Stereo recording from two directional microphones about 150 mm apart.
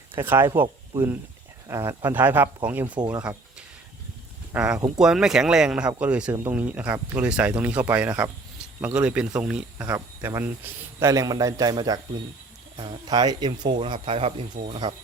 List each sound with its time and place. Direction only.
0.1 s speech: 15° right (ahead or behind)
4.5 s speech: 5° right (ahead or behind); by 14.9 s 35° right (ahead or behind)